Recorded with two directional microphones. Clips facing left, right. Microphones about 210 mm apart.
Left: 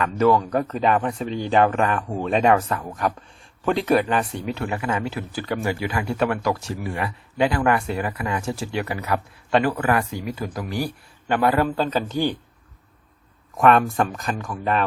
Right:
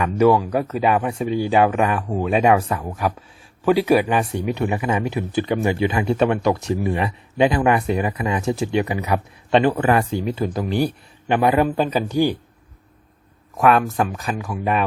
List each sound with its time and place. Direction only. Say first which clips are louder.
0.0 s speech: right 3 dB; 10° right (ahead or behind)
13.6 s speech: even; centre (ahead or behind)